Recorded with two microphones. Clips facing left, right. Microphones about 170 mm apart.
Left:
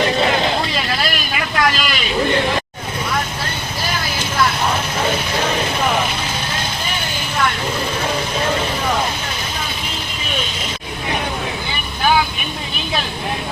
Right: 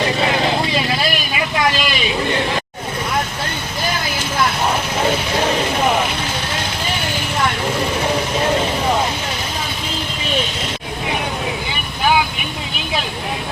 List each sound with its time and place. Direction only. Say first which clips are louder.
1.4 s vehicle: even; 20° right (ahead or behind)